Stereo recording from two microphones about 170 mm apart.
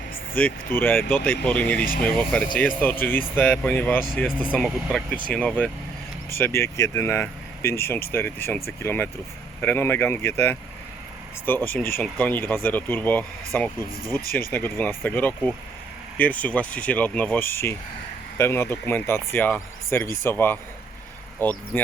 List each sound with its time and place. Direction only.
0.3 s speech: 10° left (ahead or behind)
1.8 s speech: 55° left (ahead or behind)
2.0 s speech: 5° left (ahead or behind)
6.3 s speech: 15° left (ahead or behind)